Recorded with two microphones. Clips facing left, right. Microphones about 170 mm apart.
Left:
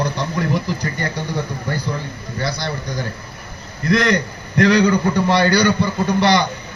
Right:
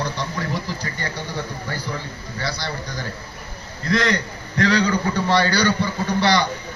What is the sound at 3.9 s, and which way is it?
A man's voice, 15° left (ahead or behind).